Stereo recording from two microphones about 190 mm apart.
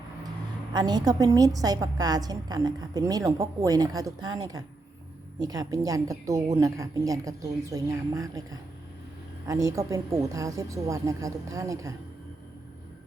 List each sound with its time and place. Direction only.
0.7 s a woman's voice: 20° right (ahead or behind)